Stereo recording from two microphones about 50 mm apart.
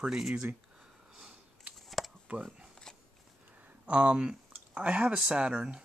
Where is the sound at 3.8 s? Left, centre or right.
Right.